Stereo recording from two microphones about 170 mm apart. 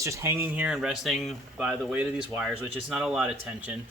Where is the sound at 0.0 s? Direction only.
15° right (ahead or behind).